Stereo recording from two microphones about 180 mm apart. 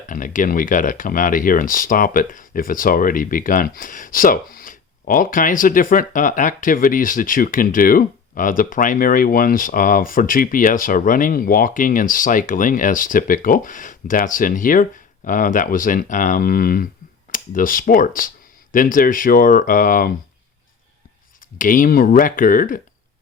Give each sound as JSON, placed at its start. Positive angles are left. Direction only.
{"t": 0.1, "sound": "speech", "side_deg": 45}
{"t": 21.6, "sound": "speech", "side_deg": 50}